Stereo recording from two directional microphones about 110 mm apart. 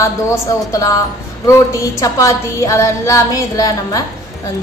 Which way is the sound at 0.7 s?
30° left (ahead or behind).